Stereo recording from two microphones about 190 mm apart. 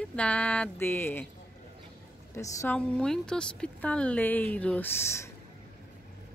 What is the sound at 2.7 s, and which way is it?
Speech, 5° left (ahead or behind).